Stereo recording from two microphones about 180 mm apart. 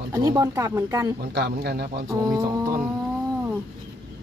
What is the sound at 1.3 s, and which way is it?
Speech, 65° right (ahead or behind).